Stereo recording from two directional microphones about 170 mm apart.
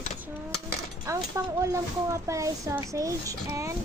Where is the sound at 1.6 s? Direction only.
20° right (ahead or behind).